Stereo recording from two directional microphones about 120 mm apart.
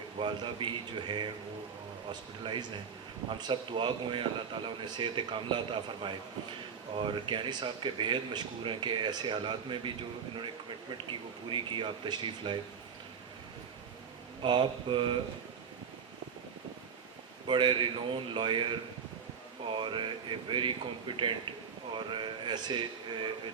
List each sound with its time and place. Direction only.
0.2 s speech: 45° right (ahead or behind)
2.4 s speech: 40° right (ahead or behind)
10.9 s speech: 45° right (ahead or behind)
14.4 s speech: 45° right (ahead or behind)
17.4 s speech: 40° right (ahead or behind)
21.9 s speech: 40° right (ahead or behind)